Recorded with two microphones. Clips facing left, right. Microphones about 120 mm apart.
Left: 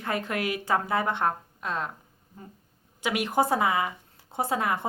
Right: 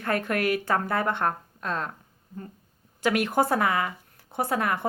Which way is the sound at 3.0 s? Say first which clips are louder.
Right 2 dB; 15° left (ahead or behind).